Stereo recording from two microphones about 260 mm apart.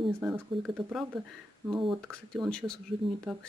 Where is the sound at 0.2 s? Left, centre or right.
Centre.